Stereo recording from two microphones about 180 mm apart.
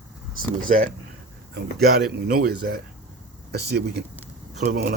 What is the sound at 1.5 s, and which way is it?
A man's voice, 60° right (ahead or behind).